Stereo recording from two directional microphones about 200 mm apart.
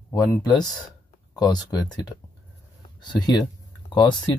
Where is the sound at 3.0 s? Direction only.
20° left (ahead or behind).